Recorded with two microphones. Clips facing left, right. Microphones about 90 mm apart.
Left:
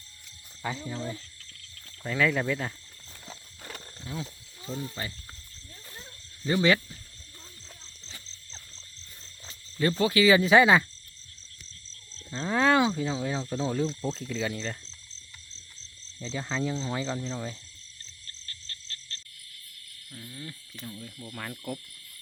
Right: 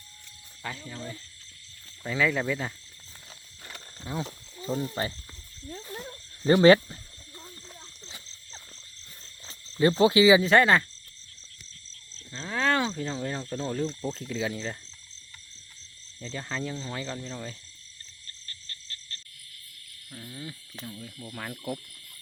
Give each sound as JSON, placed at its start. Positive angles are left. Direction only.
{"t": 0.6, "sound": "speech", "side_deg": 15}
{"t": 2.0, "sound": "speech", "side_deg": 0}
{"t": 4.7, "sound": "speech", "side_deg": -35}
{"t": 5.9, "sound": "a sound", "side_deg": -50}
{"t": 9.5, "sound": "cricket", "side_deg": -30}
{"t": 10.4, "sound": "speech", "side_deg": 5}
{"t": 12.3, "sound": "speech", "side_deg": 10}
{"t": 16.1, "sound": "speech", "side_deg": 0}
{"t": 20.1, "sound": "a sound", "side_deg": -20}
{"t": 20.8, "sound": "speech", "side_deg": 0}